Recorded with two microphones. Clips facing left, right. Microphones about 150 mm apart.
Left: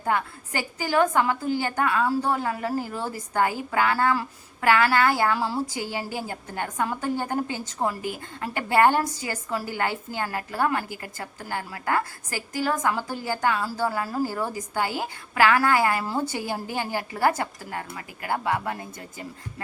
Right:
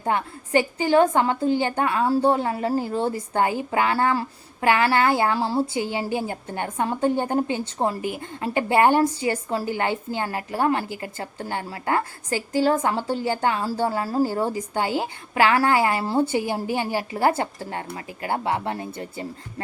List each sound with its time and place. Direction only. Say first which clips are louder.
0.0 s a woman's voice: right 1 dB; 25° right (ahead or behind)
2.7 s a woman's voice: right 6 dB; 20° right (ahead or behind)
5.4 s a woman's voice: right 4 dB; 40° right (ahead or behind)
5.7 s a woman's voice: right 5 dB; 20° right (ahead or behind)
13.6 s a woman's voice: right 3 dB; 35° right (ahead or behind)